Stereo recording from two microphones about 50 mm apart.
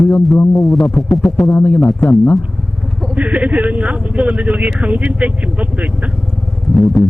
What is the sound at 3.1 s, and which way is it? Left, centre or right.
Speech, right.